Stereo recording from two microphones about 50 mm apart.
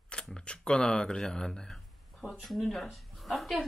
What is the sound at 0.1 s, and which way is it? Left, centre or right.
Speech, centre.